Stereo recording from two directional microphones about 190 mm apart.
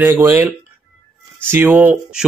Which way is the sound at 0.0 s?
10° right (ahead or behind).